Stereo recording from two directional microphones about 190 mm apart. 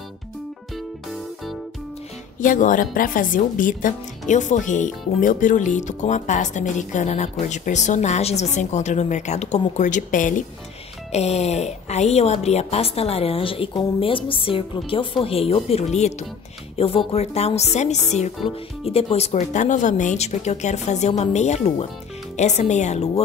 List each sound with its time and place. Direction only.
2.4 s speech: 45° left (ahead or behind)